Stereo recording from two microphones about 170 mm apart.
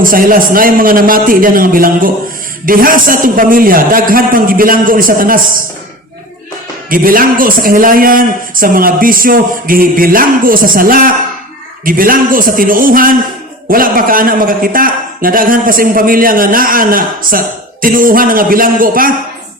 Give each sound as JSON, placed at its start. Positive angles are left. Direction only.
{"t": 0.0, "sound": "a man's voice", "side_deg": -55}
{"t": 6.9, "sound": "a man's voice", "side_deg": -55}